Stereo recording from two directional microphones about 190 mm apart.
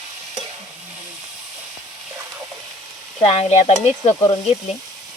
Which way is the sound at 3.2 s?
30° left (ahead or behind).